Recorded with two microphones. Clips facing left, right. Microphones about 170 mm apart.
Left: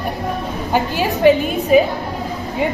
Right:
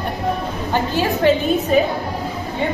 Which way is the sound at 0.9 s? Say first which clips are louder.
Left 3 dB; 15° left (ahead or behind).